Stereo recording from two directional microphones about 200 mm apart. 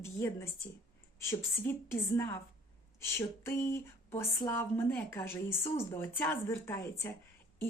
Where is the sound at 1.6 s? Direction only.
15° left (ahead or behind).